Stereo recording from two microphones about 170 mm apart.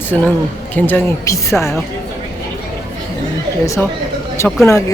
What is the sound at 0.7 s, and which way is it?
Speech, 10° left (ahead or behind).